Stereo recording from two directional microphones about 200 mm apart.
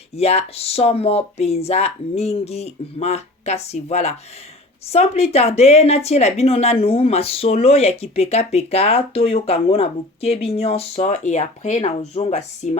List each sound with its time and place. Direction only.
0.2 s speech: 30° left (ahead or behind)